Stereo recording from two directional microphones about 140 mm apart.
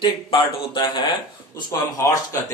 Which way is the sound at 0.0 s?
35° left (ahead or behind).